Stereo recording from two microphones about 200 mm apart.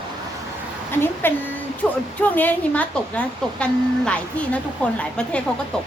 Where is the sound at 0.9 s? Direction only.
10° left (ahead or behind).